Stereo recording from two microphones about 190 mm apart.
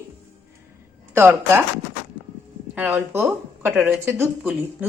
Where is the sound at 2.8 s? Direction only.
10° right (ahead or behind).